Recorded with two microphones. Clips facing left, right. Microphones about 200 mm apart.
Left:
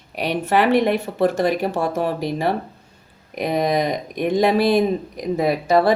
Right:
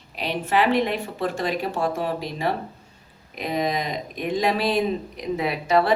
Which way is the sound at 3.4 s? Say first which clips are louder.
Left 6 dB; 45° left (ahead or behind).